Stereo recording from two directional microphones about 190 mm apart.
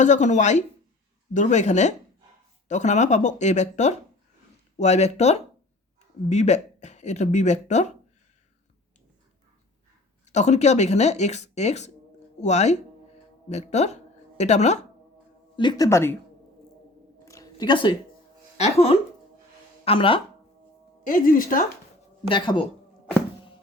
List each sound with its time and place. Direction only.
0.0 s speech: 40° left (ahead or behind)
10.2 s speech: 35° left (ahead or behind)
15.5 s speech: 20° left (ahead or behind)
17.2 s a sound: 20° left (ahead or behind)
18.5 s speech: 35° left (ahead or behind)
21.0 s speech: 45° left (ahead or behind)
22.3 s speech: 25° left (ahead or behind)